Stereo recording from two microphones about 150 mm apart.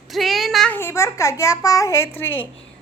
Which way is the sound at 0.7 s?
15° left (ahead or behind).